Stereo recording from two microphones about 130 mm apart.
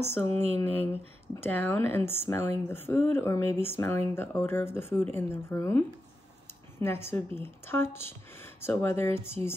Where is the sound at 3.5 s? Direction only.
55° right (ahead or behind).